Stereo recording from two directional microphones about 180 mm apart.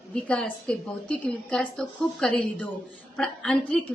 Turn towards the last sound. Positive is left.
turn(degrees=5)  # may be behind; listen again after turning